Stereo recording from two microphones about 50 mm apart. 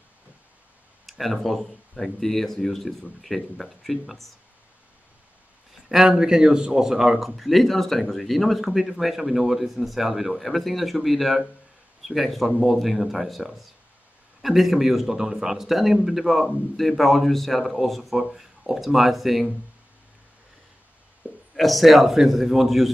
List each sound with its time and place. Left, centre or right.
1.0 s speech: centre
6.1 s a man's voice: centre
21.2 s a sound: right
21.5 s speech: centre